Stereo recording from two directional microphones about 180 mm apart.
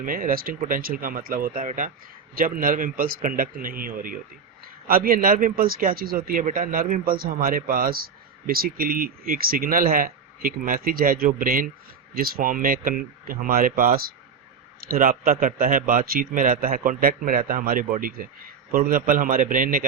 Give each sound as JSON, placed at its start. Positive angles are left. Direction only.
{"t": 0.0, "sound": "a man's voice", "side_deg": -50}